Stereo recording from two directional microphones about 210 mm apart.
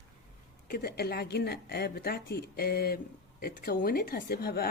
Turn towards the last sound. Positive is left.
turn(degrees=50)  # may be behind; listen again after turning